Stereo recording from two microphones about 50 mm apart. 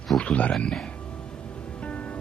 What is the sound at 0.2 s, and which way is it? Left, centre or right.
Speech, left.